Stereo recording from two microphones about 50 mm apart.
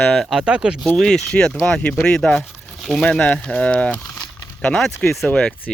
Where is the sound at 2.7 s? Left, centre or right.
Centre.